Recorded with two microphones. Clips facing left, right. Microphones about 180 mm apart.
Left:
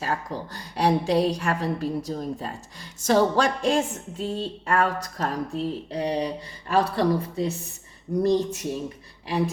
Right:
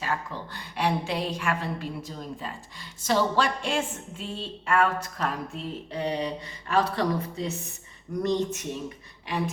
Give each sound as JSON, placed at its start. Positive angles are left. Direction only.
{"t": 0.0, "sound": "a woman's voice", "side_deg": 40}